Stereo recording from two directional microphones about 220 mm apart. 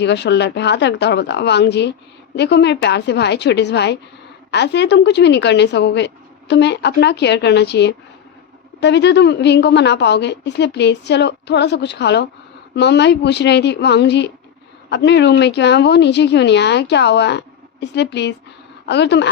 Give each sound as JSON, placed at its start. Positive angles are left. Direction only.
{"t": 0.0, "sound": "a woman's voice", "side_deg": 50}